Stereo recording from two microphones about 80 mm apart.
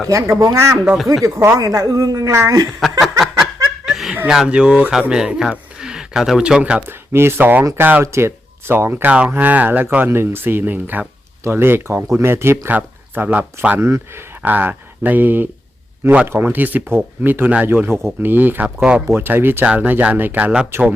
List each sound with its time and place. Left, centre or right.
0.3 s speech: right
3.0 s snicker: centre
4.3 s speech: centre
6.8 s speech: right
8.0 s speech: right; by 13.7 s centre
13.7 s speech: right
14.4 s speech: right
17.8 s speech: right; by 19.0 s centre
19.1 s speech: right